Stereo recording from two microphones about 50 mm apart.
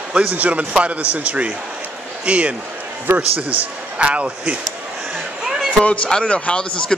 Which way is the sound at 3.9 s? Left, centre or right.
Right.